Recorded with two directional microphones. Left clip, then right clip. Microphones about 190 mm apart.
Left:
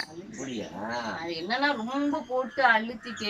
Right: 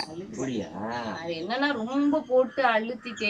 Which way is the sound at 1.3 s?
Centre (ahead or behind).